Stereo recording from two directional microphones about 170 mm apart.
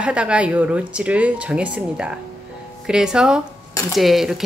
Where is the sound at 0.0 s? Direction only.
5° right (ahead or behind).